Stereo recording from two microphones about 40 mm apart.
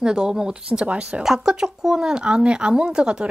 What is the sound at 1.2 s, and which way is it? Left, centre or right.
Speech, centre.